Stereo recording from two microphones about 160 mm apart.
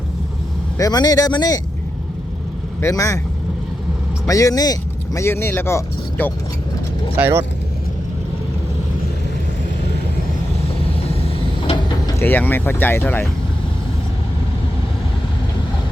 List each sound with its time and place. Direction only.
0.8 s speech: 25° left (ahead or behind)
2.8 s speech: 20° left (ahead or behind)
4.3 s speech: 20° left (ahead or behind)
7.2 s speech: 15° right (ahead or behind)
11.7 s mechanisms: 25° left (ahead or behind)
12.2 s speech: 15° left (ahead or behind)